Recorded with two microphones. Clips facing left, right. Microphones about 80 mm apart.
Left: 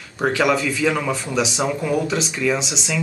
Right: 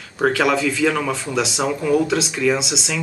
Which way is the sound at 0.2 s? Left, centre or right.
Centre.